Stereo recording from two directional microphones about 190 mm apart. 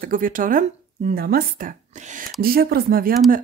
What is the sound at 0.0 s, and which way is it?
Speech, 45° right (ahead or behind).